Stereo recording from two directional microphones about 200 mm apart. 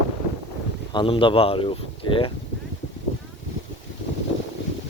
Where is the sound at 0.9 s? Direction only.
25° left (ahead or behind).